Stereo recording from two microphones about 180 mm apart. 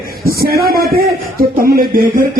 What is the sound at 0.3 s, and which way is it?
A man's voice, 55° right (ahead or behind).